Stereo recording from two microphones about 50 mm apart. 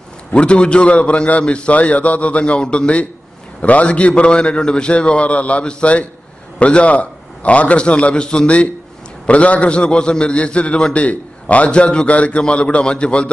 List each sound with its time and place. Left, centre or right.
0.3 s a man's voice: left